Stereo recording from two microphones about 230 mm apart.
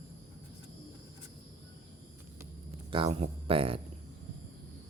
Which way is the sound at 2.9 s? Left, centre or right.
Right.